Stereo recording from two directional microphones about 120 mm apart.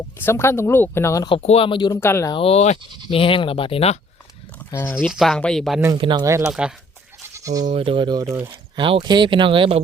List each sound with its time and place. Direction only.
0.2 s speech: 20° left (ahead or behind)
1.3 s speech: 55° left (ahead or behind)
1.9 s speech: 20° left (ahead or behind)
2.3 s speech: 55° left (ahead or behind)
4.7 s speech: 15° left (ahead or behind)
4.9 s speech: 5° right (ahead or behind)
6.0 s speech: 40° right (ahead or behind)
6.4 s speech: 5° right (ahead or behind)
7.3 s goat: 30° right (ahead or behind)
7.8 s speech: 45° right (ahead or behind)
8.2 s speech: 25° right (ahead or behind)
8.7 s speech: 45° right (ahead or behind)